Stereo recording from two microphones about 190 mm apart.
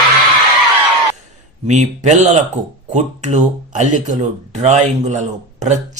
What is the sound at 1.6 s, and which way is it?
Speech, 40° right (ahead or behind).